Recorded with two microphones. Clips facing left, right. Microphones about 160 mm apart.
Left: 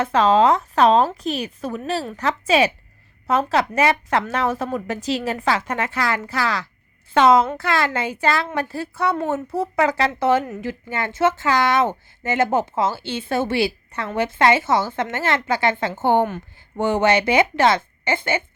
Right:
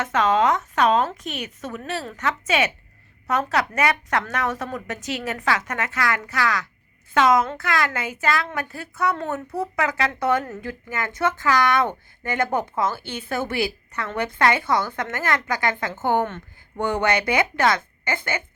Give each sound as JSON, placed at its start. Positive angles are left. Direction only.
{"t": 0.0, "sound": "a woman's voice", "side_deg": 30}